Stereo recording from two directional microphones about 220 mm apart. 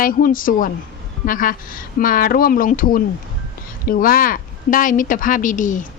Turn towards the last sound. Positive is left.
turn(degrees=35)  # may be behind; listen again after turning